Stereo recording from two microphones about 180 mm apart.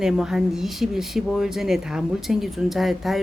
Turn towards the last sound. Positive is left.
turn(degrees=0)  # may be behind; listen again after turning